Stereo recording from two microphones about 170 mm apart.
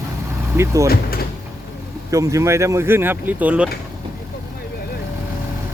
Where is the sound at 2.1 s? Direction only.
20° right (ahead or behind).